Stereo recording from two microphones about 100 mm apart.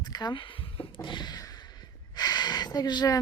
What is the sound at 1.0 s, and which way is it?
Speech, 50° left (ahead or behind).